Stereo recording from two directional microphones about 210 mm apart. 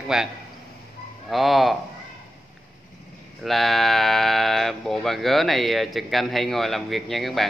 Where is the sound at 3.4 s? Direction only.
Centre (ahead or behind).